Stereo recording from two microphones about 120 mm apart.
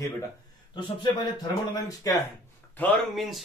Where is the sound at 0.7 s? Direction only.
40° left (ahead or behind).